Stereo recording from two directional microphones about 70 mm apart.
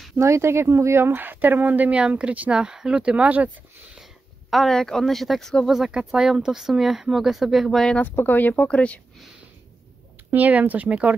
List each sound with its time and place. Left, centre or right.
0.1 s speech: right
1.1 s speech: right
4.5 s speech: centre
5.7 s speech: centre
8.0 s speech: left
10.3 s speech: right